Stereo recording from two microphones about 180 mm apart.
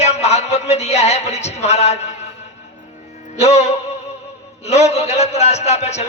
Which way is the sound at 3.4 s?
35° left (ahead or behind).